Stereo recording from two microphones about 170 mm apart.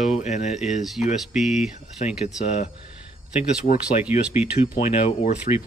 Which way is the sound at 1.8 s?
40° left (ahead or behind).